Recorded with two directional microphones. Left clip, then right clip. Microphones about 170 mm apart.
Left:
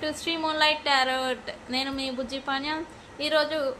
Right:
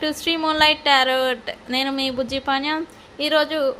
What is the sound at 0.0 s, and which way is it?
A woman's voice, 60° right (ahead or behind).